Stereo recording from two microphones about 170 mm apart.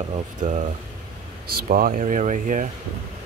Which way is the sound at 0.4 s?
45° right (ahead or behind).